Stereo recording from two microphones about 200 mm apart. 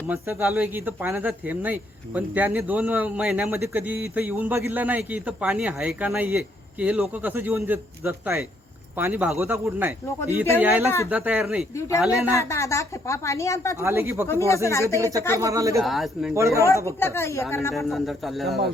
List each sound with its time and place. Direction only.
0.1 s a man's voice: 10° right (ahead or behind)
11.8 s a woman's voice: 15° left (ahead or behind)
13.7 s a man's voice: 10° right (ahead or behind)
14.3 s a woman's voice: 15° left (ahead or behind)
14.8 s a man's voice: 15° right (ahead or behind)
15.8 s speech: centre (ahead or behind)
16.3 s a man's voice: 15° right (ahead or behind)
17.0 s a woman's voice: 15° left (ahead or behind)
17.7 s speech: centre (ahead or behind)